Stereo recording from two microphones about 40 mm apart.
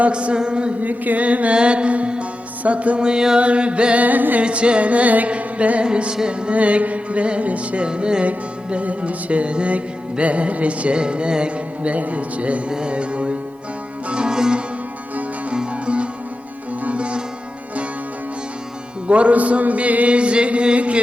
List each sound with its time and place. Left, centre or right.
0.1 s music: right
0.8 s music: right; by 3.4 s centre
3.4 s music: right
4.0 s music: right
4.4 s music: right
5.8 s music: right
6.5 s music: right
7.9 s music: right
15.7 s music: right
16.8 s sitar: right
19.0 s music: right